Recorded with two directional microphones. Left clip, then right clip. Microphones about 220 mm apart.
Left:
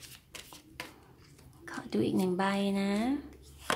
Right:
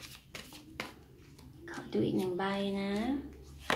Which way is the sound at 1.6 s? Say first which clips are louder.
Left 1 dB; 50° left (ahead or behind).